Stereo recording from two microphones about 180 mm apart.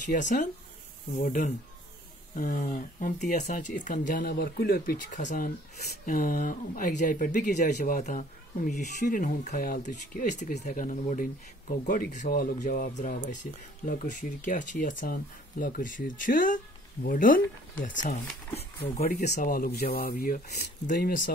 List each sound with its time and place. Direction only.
0.0 s speech: 45° left (ahead or behind)
12.3 s speech: 55° left (ahead or behind)
19.0 s speech: 45° left (ahead or behind)